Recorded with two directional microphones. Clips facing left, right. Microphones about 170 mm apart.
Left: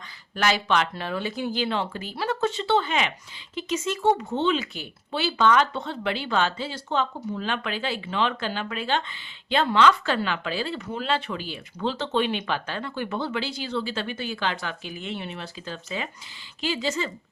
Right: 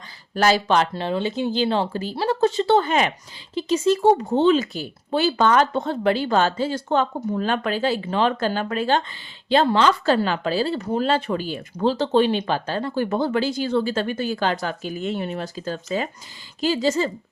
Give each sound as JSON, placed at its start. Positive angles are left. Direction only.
{"t": 0.3, "sound": "speech", "side_deg": -35}